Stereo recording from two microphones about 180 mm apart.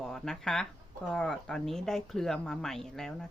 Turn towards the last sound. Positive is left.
turn(degrees=5)  # may be behind; listen again after turning